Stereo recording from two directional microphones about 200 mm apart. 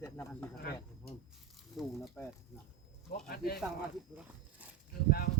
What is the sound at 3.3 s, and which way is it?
Speech, 50° left (ahead or behind).